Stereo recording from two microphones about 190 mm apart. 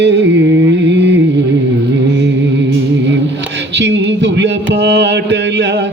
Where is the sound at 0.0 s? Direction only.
65° right (ahead or behind).